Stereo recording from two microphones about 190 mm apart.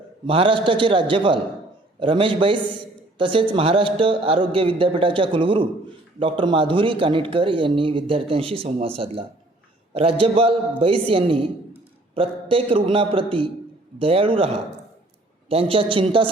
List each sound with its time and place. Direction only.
0.3 s a man's voice: 30° right (ahead or behind)